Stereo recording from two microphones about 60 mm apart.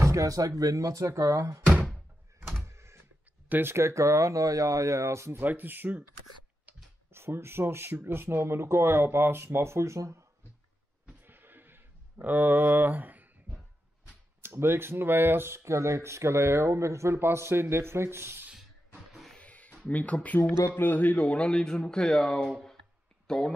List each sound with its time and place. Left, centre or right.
0.0 s speech: right
2.6 s a sound: right
3.4 s speech: right
3.7 s speech: right
5.4 s speech: right
7.1 s speech: right
11.2 s a sound: right
14.4 s speech: right
19.3 s a sound: left
20.7 s speech: left; by 22.4 s centre
22.5 s a sound: centre
23.2 s speech: centre